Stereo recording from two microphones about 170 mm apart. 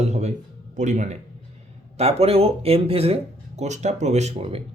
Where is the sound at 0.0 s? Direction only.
40° right (ahead or behind).